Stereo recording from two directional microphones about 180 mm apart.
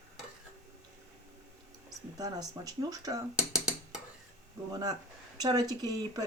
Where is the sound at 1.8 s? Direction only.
20° right (ahead or behind).